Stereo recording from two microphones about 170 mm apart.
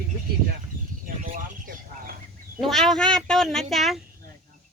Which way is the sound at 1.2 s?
55° right (ahead or behind).